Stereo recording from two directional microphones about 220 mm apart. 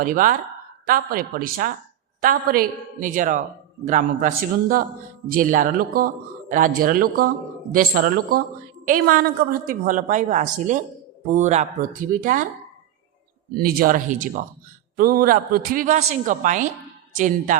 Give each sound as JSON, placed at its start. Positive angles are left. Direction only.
{"t": 0.0, "sound": "a man's voice", "side_deg": -35}
{"t": 13.6, "sound": "a man's voice", "side_deg": -40}